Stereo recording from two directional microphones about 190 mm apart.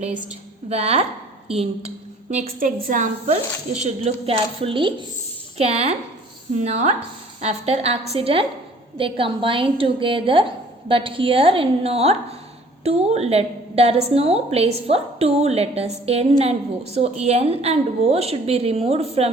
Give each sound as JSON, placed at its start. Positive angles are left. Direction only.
{"t": 0.0, "sound": "a woman's voice", "side_deg": -40}
{"t": 2.3, "sound": "a woman's voice", "side_deg": -45}